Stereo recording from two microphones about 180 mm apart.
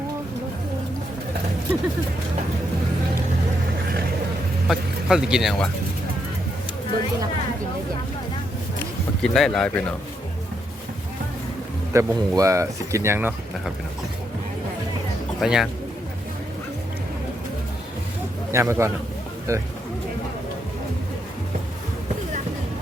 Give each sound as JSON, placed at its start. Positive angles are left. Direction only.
{"t": 4.7, "sound": "speech", "side_deg": -5}
{"t": 9.2, "sound": "speech", "side_deg": 5}
{"t": 11.9, "sound": "speech", "side_deg": -20}
{"t": 15.4, "sound": "speech", "side_deg": -5}
{"t": 18.5, "sound": "speech", "side_deg": -15}